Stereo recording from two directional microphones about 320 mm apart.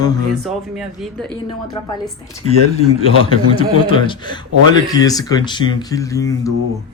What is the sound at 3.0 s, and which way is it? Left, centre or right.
Speech, centre.